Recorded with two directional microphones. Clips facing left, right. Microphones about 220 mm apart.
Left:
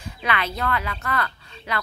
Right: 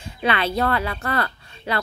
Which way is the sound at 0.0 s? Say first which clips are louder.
Right 4 dB; 30° right (ahead or behind).